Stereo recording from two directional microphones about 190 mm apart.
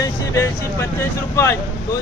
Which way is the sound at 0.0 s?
15° left (ahead or behind).